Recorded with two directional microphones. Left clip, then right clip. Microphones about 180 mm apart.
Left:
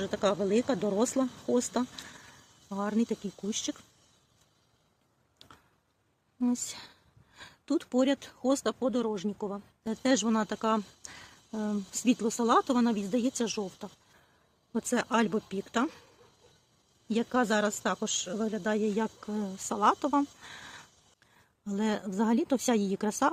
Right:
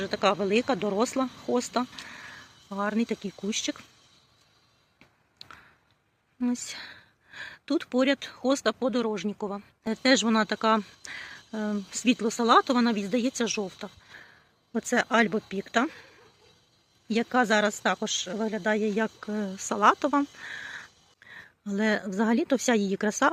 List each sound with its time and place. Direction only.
0.0 s speech: 5° left (ahead or behind)
2.2 s a sound: 10° right (ahead or behind)
3.5 s speech: 25° right (ahead or behind)
5.4 s a sound: 15° right (ahead or behind)
6.4 s speech: centre (ahead or behind)
17.1 s speech: 15° right (ahead or behind)